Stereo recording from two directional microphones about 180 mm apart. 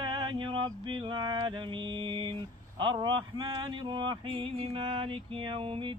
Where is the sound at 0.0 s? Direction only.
25° right (ahead or behind).